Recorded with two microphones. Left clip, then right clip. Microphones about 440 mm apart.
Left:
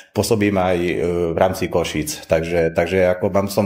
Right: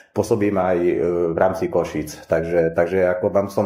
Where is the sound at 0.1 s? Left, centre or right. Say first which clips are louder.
Left 1 dB; left.